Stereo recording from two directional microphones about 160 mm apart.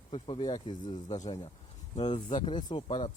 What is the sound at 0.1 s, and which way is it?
Speech, 35° left (ahead or behind).